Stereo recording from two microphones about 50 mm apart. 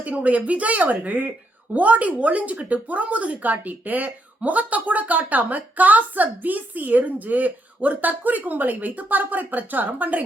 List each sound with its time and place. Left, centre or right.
0.0 s a woman's voice: right